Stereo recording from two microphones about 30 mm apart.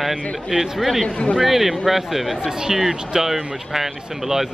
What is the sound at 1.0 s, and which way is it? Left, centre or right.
Speech, left.